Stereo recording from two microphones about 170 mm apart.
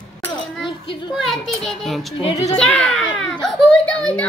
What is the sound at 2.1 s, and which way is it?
Speech, 35° left (ahead or behind).